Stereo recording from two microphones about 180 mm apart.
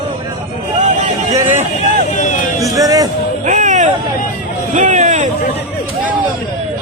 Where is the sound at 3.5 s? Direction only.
45° right (ahead or behind).